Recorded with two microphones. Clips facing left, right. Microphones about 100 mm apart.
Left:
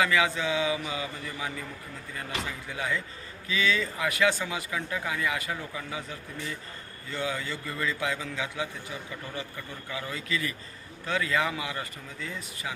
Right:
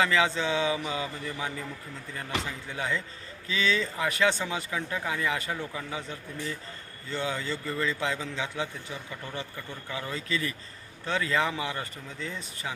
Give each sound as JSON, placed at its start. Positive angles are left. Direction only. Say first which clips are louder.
{"t": 0.0, "sound": "a man's voice", "louder": "even", "side_deg": -30}
{"t": 2.7, "sound": "speech", "louder": "even", "side_deg": -30}
{"t": 9.9, "sound": "a man's voice", "louder": "right 1 dB", "side_deg": -30}